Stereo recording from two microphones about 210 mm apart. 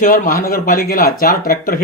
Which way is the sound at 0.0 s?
40° left (ahead or behind).